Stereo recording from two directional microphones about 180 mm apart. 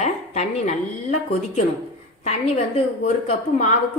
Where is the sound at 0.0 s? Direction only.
40° left (ahead or behind).